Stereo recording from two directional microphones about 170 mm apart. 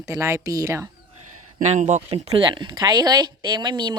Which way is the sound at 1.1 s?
45° right (ahead or behind).